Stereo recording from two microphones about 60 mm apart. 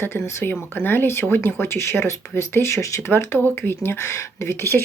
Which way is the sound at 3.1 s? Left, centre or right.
Left.